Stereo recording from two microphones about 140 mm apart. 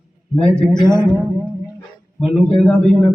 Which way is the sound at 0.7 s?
30° left (ahead or behind).